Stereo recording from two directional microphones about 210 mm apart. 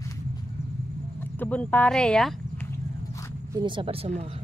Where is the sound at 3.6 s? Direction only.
25° right (ahead or behind).